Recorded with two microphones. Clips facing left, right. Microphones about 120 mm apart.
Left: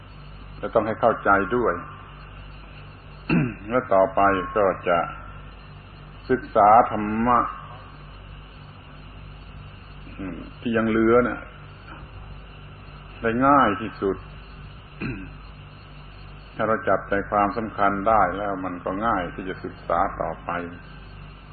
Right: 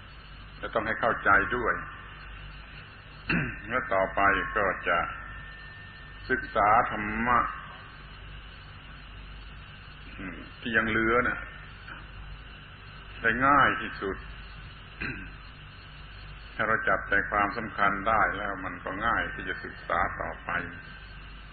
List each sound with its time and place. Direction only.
0.6 s a man's voice: 40° left (ahead or behind)
0.8 s a man's voice: 30° left (ahead or behind)
3.3 s a man's voice: 35° left (ahead or behind)
6.2 s a man's voice: 40° left (ahead or behind)
10.1 s a man's voice: 35° left (ahead or behind)
13.2 s a man's voice: 35° left (ahead or behind)
16.5 s a man's voice: 35° left (ahead or behind)